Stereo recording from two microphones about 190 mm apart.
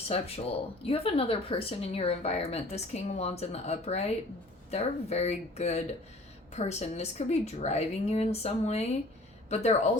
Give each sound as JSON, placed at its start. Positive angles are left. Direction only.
{"t": 0.1, "sound": "speech", "side_deg": 30}